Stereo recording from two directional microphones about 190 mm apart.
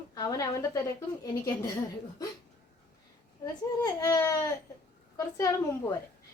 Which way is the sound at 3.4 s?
20° left (ahead or behind).